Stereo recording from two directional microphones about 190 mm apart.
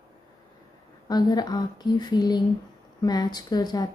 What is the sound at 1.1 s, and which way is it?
A woman's voice, 20° left (ahead or behind).